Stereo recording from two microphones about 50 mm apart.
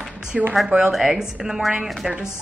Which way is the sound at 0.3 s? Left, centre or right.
Centre.